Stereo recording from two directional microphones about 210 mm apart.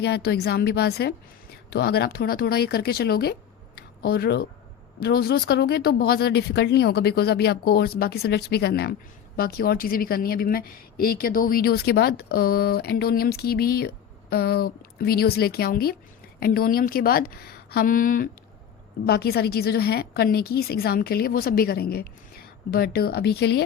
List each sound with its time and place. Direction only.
0.0 s speech: 50° left (ahead or behind)
3.8 s a sound: 45° left (ahead or behind)
4.9 s speech: 50° left (ahead or behind)